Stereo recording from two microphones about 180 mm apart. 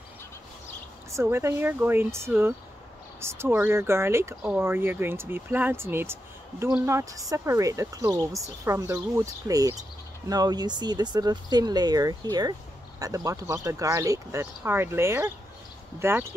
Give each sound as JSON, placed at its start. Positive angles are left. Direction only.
{"t": 1.1, "sound": "speech", "side_deg": -15}